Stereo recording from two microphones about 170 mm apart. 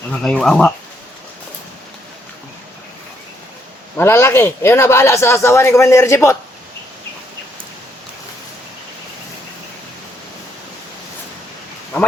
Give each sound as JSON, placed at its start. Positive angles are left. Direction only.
{"t": 0.1, "sound": "speech", "side_deg": 5}
{"t": 3.9, "sound": "a man's voice", "side_deg": 15}